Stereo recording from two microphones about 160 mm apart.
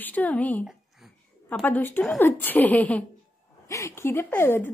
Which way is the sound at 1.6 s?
10° left (ahead or behind).